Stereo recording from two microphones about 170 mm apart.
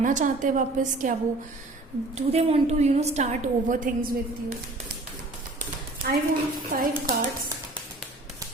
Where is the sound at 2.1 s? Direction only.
40° right (ahead or behind).